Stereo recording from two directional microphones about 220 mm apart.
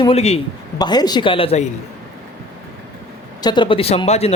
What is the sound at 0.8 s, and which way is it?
Speech, 20° left (ahead or behind).